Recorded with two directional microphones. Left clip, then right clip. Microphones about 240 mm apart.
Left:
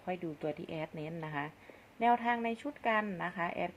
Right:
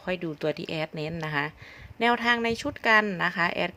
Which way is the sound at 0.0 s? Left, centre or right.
Right.